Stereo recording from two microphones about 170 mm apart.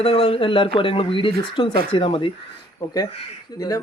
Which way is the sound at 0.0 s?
35° left (ahead or behind).